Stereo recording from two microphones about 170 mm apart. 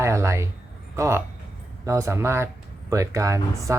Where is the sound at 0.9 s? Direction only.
15° right (ahead or behind).